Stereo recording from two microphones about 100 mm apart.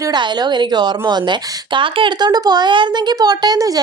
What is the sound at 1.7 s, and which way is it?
Speech, 60° right (ahead or behind).